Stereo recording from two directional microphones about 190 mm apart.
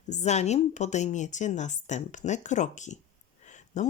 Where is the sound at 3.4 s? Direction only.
40° left (ahead or behind).